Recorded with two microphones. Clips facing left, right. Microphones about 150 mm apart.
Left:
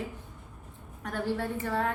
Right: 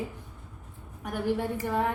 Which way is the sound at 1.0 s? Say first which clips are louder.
Right 2 dB; 15° right (ahead or behind).